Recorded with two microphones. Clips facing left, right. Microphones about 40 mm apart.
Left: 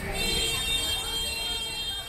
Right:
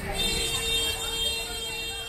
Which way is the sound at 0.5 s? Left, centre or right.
Right.